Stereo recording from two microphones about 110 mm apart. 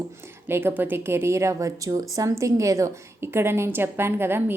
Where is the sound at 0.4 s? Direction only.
20° right (ahead or behind).